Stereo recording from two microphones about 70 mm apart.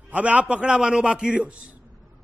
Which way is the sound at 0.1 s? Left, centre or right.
Centre.